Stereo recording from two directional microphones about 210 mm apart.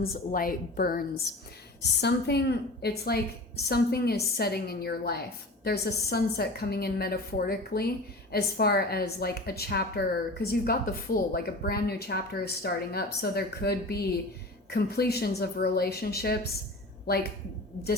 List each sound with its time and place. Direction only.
0.0 s a woman's voice: 45° left (ahead or behind)